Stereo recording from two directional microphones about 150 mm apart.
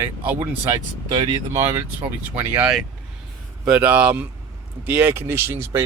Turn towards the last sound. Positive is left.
turn(degrees=-15)  # may be behind; listen again after turning